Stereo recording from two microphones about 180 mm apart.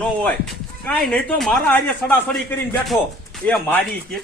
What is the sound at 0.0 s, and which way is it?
Speech, 5° left (ahead or behind).